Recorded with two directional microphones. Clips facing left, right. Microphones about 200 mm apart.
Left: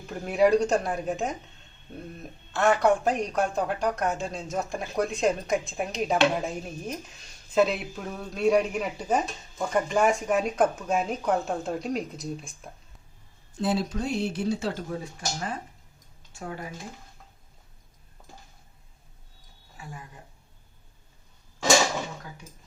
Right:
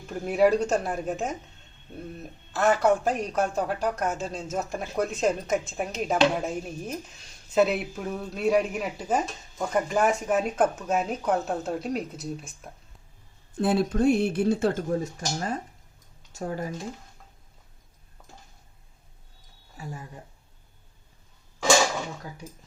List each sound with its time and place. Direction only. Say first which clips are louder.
0.3 s speech: even; 5° right (ahead or behind)
2.6 s speech: even; centre (ahead or behind)
13.6 s speech: right 4 dB; 55° right (ahead or behind); by 16.7 s 40° right (ahead or behind)